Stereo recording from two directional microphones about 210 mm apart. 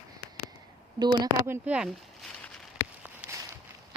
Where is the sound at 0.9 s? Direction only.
20° right (ahead or behind).